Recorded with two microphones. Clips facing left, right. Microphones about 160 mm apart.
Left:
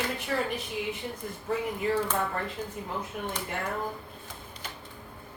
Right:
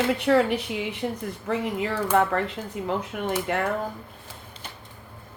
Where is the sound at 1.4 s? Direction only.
85° right.